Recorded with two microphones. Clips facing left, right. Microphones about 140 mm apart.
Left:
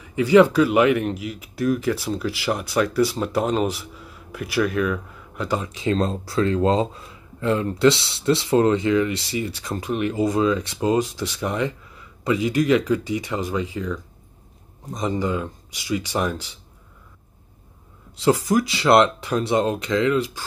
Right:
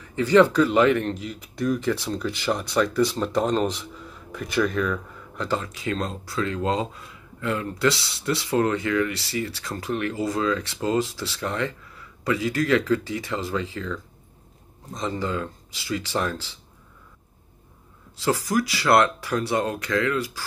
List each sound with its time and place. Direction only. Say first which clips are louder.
0.0 s speech: left 3 dB; 10° left (ahead or behind)
18.1 s speech: left 4 dB; 20° left (ahead or behind)